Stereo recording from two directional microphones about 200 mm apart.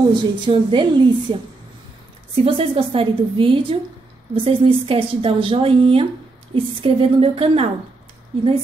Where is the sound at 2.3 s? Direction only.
30° right (ahead or behind).